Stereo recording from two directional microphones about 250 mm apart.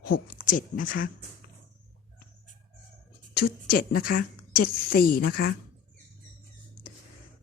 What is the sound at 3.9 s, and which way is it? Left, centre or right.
A woman's voice, left.